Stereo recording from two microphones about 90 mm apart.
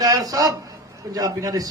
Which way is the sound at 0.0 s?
45° right (ahead or behind).